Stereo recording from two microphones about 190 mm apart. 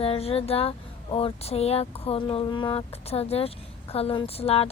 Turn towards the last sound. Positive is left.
turn(degrees=30)  # may be behind; listen again after turning